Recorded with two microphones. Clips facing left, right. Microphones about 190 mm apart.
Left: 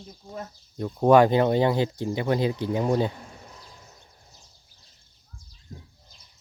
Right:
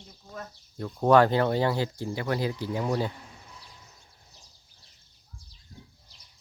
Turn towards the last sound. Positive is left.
turn(degrees=45)  # may be behind; listen again after turning